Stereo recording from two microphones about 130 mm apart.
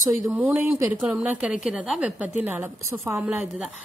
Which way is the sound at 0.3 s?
15° right (ahead or behind).